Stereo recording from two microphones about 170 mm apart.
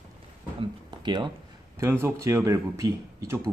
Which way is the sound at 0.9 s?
25° right (ahead or behind).